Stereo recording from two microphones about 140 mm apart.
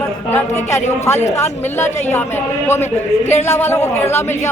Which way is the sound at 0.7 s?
20° left (ahead or behind).